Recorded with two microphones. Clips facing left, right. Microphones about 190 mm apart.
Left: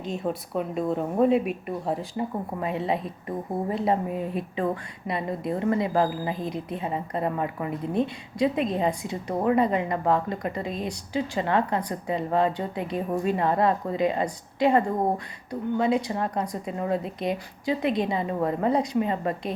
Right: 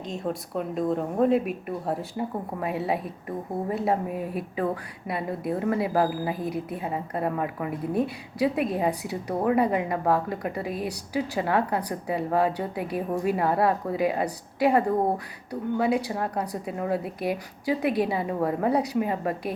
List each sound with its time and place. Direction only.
0.0 s a woman's voice: 5° left (ahead or behind)